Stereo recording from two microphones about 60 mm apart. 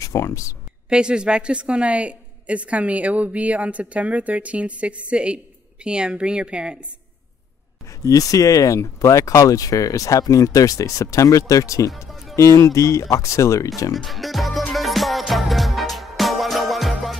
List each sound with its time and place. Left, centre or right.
0.0 s speech: left
0.8 s a woman's voice: centre
8.0 s speech: left
12.4 s speech: left
13.9 s speech: centre
14.7 s music: centre